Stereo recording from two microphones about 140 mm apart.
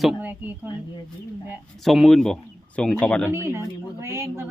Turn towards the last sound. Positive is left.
turn(degrees=-20)  # may be behind; listen again after turning